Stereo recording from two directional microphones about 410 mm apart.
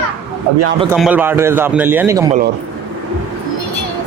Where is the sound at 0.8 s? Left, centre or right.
Centre.